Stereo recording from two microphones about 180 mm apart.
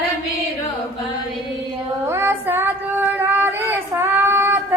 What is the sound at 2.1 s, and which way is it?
Child singing, 15° right (ahead or behind).